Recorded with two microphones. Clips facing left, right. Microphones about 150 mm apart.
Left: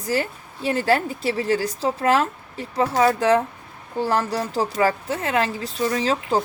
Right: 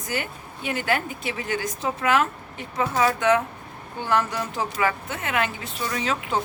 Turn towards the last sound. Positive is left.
turn(degrees=35)  # may be behind; listen again after turning